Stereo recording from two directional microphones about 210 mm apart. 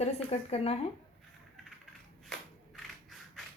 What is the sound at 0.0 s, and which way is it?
Speech, 30° left (ahead or behind).